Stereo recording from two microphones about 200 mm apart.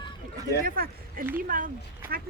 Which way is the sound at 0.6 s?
45° right (ahead or behind).